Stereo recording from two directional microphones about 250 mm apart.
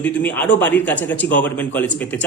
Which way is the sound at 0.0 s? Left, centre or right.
Centre.